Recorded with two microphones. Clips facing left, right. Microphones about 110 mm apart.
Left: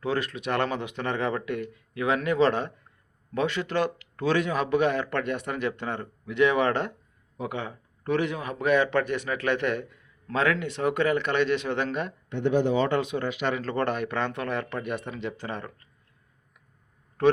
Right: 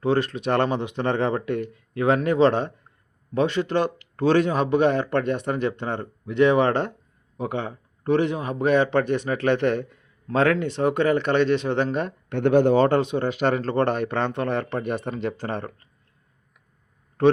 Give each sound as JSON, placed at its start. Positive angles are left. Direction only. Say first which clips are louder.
{"t": 0.0, "sound": "a man's voice", "louder": "right 6 dB", "side_deg": -30}
{"t": 12.3, "sound": "speech", "louder": "right 6 dB", "side_deg": -60}
{"t": 13.0, "sound": "speech", "louder": "right 5 dB", "side_deg": -30}